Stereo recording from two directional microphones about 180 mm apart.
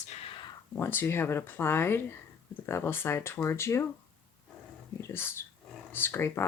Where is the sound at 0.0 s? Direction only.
40° left (ahead or behind).